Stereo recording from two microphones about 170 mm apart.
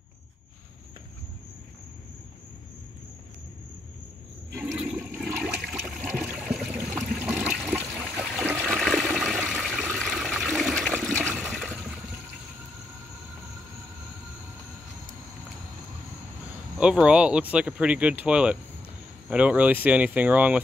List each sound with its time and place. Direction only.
4.6 s toilet flush: 5° right (ahead or behind)
5.9 s a sound: 5° right (ahead or behind)
7.2 s toilet flush: 5° right (ahead or behind)
16.7 s speech: 5° right (ahead or behind)